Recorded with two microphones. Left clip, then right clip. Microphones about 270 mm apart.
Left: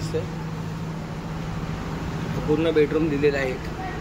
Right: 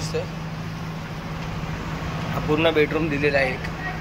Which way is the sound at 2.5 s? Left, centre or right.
Centre.